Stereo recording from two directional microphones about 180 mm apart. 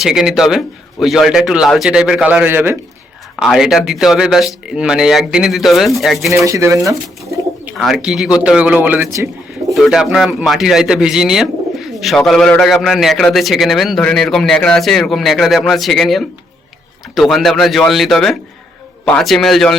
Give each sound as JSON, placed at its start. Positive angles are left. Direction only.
{"t": 0.0, "sound": "a man's voice", "side_deg": -5}
{"t": 6.3, "sound": "speech", "side_deg": -15}
{"t": 7.2, "sound": "speech", "side_deg": -5}
{"t": 9.1, "sound": "bird", "side_deg": -15}
{"t": 9.7, "sound": "a man's voice", "side_deg": 0}